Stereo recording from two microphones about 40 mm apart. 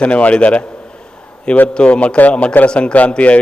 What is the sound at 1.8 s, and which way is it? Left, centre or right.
A man's voice, left.